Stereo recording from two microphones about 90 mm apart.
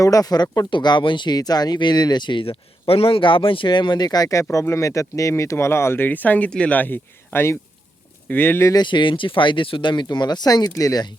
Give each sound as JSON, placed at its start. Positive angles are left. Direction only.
{"t": 0.0, "sound": "speech", "side_deg": 40}
{"t": 0.7, "sound": "speech", "side_deg": 55}
{"t": 8.7, "sound": "speech", "side_deg": 60}